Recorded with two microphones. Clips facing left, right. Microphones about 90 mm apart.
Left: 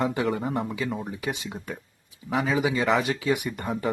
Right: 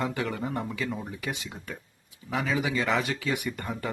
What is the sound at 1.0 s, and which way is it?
Speech, 20° left (ahead or behind).